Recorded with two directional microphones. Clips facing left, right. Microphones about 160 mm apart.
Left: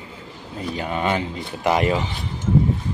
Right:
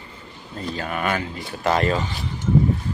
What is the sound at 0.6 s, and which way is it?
Speech, 15° left (ahead or behind).